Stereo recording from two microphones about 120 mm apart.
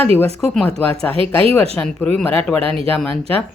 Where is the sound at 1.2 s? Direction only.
45° right (ahead or behind).